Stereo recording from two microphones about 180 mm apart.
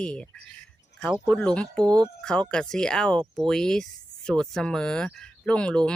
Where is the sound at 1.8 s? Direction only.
20° right (ahead or behind).